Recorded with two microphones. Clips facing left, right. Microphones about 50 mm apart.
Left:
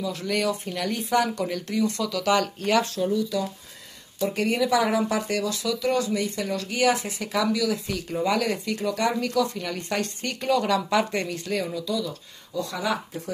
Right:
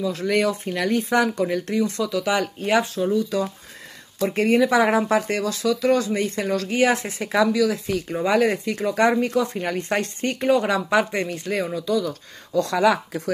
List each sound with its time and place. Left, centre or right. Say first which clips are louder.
0.0 s speech: right 5 dB; right; by 2.9 s centre
3.1 s speech: right 3 dB; right
12.5 s speech: right 8 dB; right